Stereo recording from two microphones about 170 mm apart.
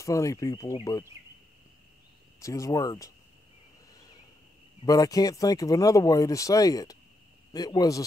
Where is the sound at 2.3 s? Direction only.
20° left (ahead or behind).